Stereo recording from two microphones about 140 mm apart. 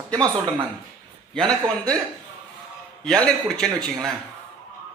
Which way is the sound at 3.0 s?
5° left (ahead or behind).